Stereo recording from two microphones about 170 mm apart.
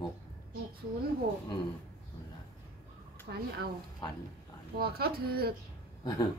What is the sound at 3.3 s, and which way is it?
Speech, 65° right (ahead or behind).